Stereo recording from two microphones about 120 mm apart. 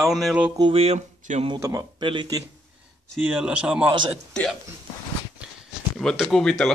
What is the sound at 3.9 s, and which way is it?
Speech, 40° right (ahead or behind).